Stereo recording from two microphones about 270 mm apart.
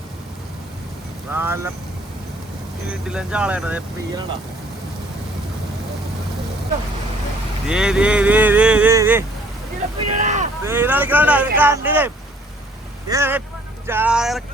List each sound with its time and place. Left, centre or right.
1.3 s speech: centre
3.1 s speech: centre
7.7 s speech: centre
10.2 s speech: right
10.6 s speech: centre